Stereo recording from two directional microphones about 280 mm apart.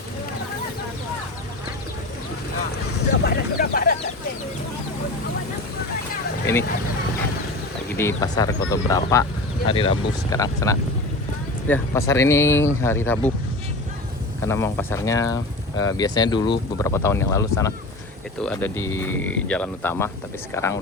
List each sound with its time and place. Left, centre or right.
3.1 s a sound: left
7.9 s speech: centre
14.4 s speech: centre